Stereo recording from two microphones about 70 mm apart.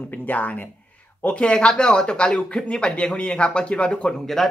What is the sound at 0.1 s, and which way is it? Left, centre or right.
Speech, left.